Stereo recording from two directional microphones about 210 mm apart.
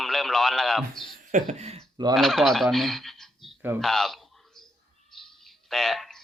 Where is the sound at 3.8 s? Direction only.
Centre (ahead or behind).